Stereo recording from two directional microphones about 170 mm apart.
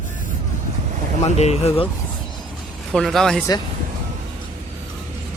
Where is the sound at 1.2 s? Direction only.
40° left (ahead or behind).